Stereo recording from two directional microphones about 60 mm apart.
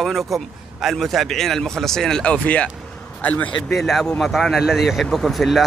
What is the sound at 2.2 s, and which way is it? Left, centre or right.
Speech, left.